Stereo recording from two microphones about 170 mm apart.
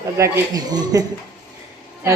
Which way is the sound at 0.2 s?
25° right (ahead or behind).